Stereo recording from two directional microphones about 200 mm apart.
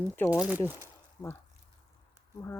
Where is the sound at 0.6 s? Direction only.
10° left (ahead or behind).